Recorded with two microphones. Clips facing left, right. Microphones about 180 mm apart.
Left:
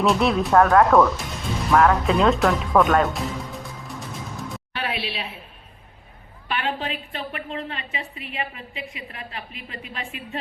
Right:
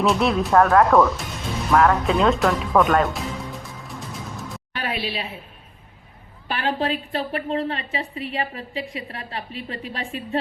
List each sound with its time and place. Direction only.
0.0 s speech: centre (ahead or behind)
4.4 s music: centre (ahead or behind)
4.8 s a woman's voice: 45° right (ahead or behind)
6.5 s a woman's voice: 35° right (ahead or behind)